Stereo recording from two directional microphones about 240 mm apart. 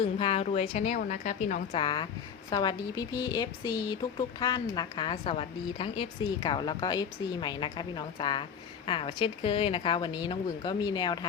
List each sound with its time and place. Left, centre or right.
0.2 s speech: left
1.8 s a woman's voice: centre